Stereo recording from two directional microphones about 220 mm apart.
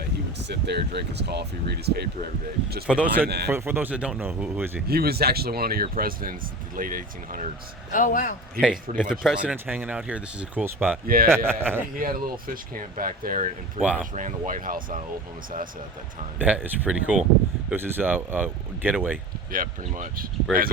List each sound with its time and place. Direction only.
0.4 s speech: 50° right (ahead or behind)
2.8 s speech: 5° right (ahead or behind)
3.2 s speech: 45° right (ahead or behind)
3.5 s speech: 10° right (ahead or behind)
4.9 s speech: 45° right (ahead or behind)
7.9 s a man's voice: 35° left (ahead or behind)
9.0 s speech: 5° right (ahead or behind)
11.0 s speech: 40° right (ahead or behind)
11.4 s speech: 10° right (ahead or behind)
11.9 s speech: 40° right (ahead or behind)
13.8 s speech: 5° right (ahead or behind)
14.1 s speech: 35° right (ahead or behind)
16.4 s speech: 5° right (ahead or behind)
19.5 s speech: 40° right (ahead or behind)